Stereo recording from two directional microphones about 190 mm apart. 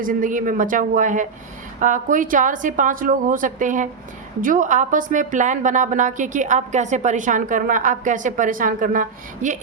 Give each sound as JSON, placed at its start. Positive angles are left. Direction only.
{"t": 0.0, "sound": "a woman's voice", "side_deg": -45}